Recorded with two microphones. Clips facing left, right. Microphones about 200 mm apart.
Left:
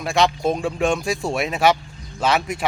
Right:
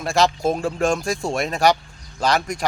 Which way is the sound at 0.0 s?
Centre (ahead or behind).